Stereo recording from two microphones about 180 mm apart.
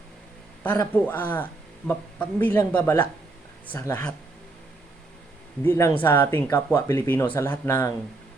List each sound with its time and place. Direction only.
0.6 s speech: 10° left (ahead or behind)
5.6 s speech: 15° left (ahead or behind)